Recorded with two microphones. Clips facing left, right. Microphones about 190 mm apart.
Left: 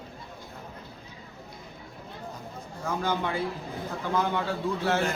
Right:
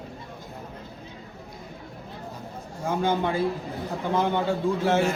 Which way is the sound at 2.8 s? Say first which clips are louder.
Right 4 dB; 25° right (ahead or behind).